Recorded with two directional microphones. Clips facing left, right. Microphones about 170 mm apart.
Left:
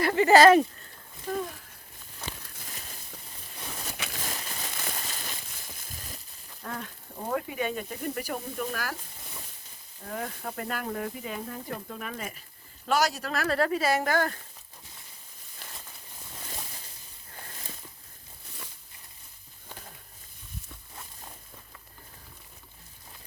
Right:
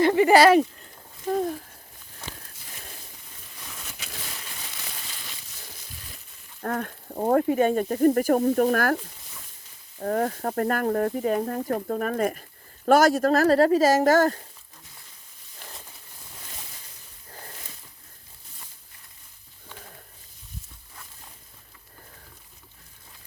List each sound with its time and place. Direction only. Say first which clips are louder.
0.0 s speech: right 2 dB; 15° right (ahead or behind)
1.3 s speech: right 7 dB; 40° right (ahead or behind)
3.7 s a sound: left 4 dB; 35° left (ahead or behind)
6.6 s speech: right 9 dB; 50° right (ahead or behind)
10.0 s speech: right 11 dB; 50° right (ahead or behind)